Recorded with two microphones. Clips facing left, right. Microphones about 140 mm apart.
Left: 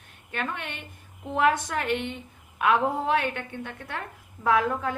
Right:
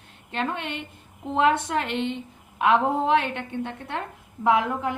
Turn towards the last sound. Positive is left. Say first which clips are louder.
# right 2 dB
turn(degrees=-20)  # may be behind; listen again after turning